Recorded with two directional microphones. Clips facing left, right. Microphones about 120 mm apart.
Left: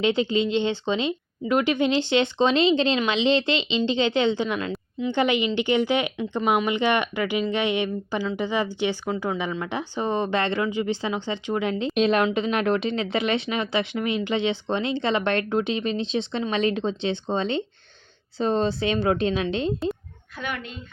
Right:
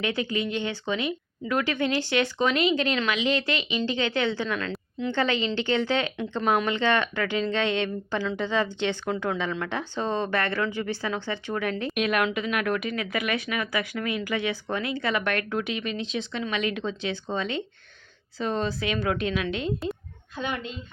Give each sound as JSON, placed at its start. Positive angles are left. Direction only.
{"t": 0.0, "sound": "speech", "side_deg": 20}
{"t": 4.7, "sound": "a sound", "side_deg": 5}
{"t": 5.1, "sound": "speech", "side_deg": 15}
{"t": 20.4, "sound": "a woman's voice", "side_deg": -25}